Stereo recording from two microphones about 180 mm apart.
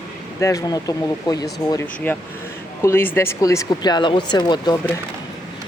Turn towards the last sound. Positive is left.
turn(degrees=20)  # may be behind; listen again after turning